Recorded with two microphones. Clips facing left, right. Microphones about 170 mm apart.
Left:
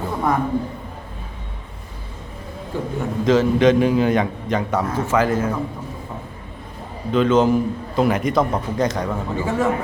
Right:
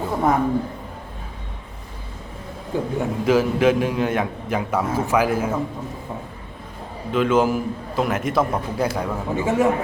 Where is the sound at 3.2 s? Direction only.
10° right (ahead or behind).